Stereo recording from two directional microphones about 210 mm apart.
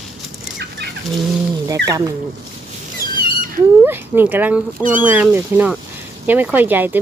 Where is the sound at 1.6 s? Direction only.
15° right (ahead or behind).